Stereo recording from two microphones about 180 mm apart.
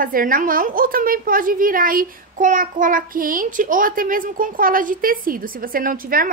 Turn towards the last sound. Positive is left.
turn(degrees=-50)  # may be behind; listen again after turning